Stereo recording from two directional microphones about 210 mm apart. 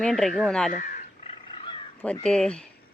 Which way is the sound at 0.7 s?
35° left (ahead or behind).